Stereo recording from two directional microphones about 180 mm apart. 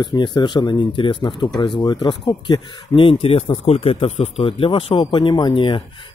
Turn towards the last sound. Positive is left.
turn(degrees=25)  # may be behind; listen again after turning